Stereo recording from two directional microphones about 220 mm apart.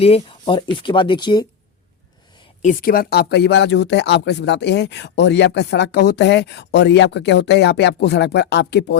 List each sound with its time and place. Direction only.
0.0 s speech: 25° left (ahead or behind)
2.6 s speech: 40° left (ahead or behind)